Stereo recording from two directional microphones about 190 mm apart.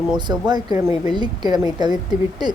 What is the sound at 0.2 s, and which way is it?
A woman's voice, 25° right (ahead or behind).